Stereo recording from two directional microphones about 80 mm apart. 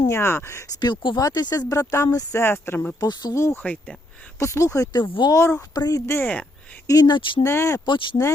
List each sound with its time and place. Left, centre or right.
0.0 s speech: left
0.7 s speech: left
1.5 s speech: left
2.3 s speech: left
3.0 s speech: left
3.3 s speech: left
3.6 s speech: centre
4.4 s speech: left
4.9 s speech: left
5.3 s speech: left
5.7 s speech: left
7.1 s speech: left
7.4 s speech: left
7.9 s speech: left